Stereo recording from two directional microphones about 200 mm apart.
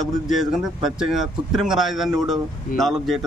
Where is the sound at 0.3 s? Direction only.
Centre (ahead or behind).